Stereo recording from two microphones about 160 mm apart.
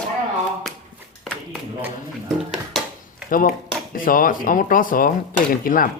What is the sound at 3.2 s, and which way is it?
Speech, 60° left (ahead or behind).